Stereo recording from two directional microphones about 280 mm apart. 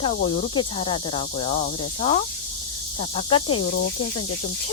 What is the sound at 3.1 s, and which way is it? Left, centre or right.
Speech, centre.